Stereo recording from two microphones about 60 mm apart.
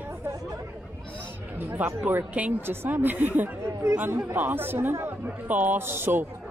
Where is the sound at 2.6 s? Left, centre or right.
Right.